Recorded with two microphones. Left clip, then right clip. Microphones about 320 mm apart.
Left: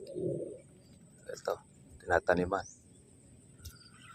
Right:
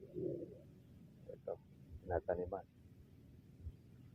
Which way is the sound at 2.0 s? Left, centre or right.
Centre.